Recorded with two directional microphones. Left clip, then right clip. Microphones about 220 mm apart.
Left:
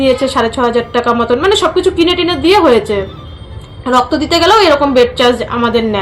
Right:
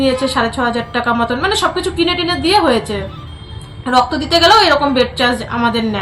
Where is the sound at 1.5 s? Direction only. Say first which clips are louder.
Left 5 dB; 30° right (ahead or behind).